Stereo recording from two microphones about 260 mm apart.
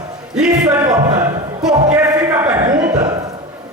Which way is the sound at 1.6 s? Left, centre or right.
Centre.